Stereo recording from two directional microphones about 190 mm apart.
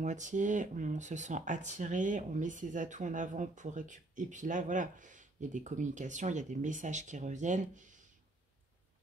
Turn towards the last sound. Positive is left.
turn(degrees=-40)  # may be behind; listen again after turning